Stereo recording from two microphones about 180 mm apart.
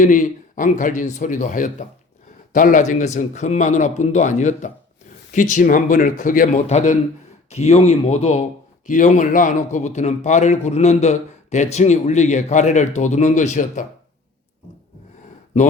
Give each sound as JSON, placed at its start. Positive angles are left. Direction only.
{"t": 0.0, "sound": "a man's voice", "side_deg": 45}